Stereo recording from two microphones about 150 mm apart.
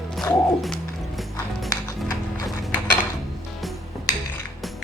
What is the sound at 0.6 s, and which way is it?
Bird, centre (ahead or behind).